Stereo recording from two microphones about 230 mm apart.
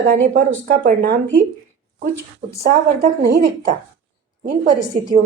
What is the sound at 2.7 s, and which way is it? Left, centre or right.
A woman's voice, right.